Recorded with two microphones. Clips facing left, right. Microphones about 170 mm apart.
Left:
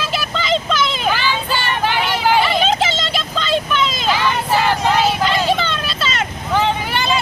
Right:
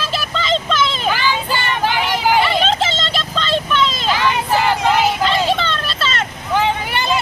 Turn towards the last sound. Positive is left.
turn(degrees=-5)  # may be behind; listen again after turning